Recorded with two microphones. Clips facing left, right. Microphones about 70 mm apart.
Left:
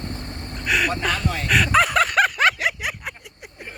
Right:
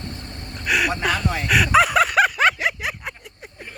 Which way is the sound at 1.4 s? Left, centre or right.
Centre.